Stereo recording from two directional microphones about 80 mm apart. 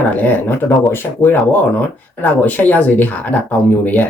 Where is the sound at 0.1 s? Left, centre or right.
Left.